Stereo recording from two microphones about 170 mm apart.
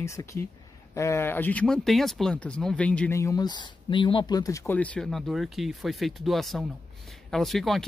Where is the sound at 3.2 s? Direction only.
20° left (ahead or behind).